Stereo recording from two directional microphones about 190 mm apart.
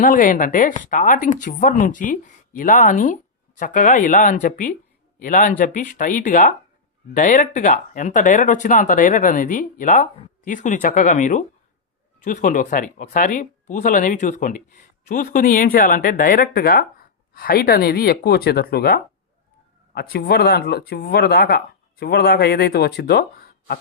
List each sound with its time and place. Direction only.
0.0 s speech: 45° left (ahead or behind)